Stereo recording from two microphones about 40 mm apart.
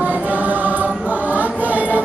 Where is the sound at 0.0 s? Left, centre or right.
Right.